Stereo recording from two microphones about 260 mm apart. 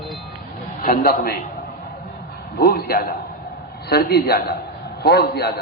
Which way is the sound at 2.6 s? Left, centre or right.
Left.